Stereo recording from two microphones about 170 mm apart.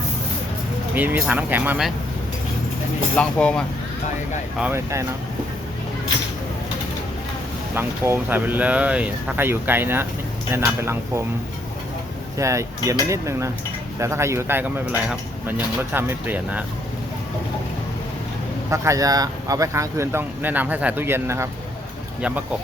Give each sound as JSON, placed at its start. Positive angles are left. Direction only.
{"t": 0.9, "sound": "speech", "side_deg": -10}
{"t": 3.2, "sound": "speech", "side_deg": 5}
{"t": 4.6, "sound": "speech", "side_deg": -15}
{"t": 7.8, "sound": "speech", "side_deg": -15}
{"t": 12.4, "sound": "speech", "side_deg": -20}
{"t": 18.7, "sound": "speech", "side_deg": -20}